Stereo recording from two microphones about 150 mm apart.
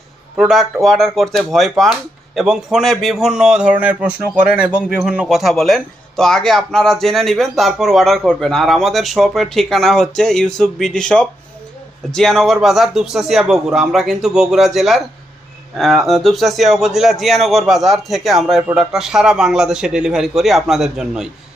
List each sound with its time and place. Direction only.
0.3 s speech: centre (ahead or behind)